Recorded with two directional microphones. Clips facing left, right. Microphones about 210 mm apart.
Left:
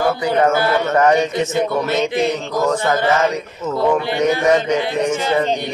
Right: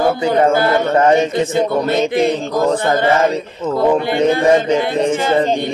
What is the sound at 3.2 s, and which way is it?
Music, 30° right (ahead or behind).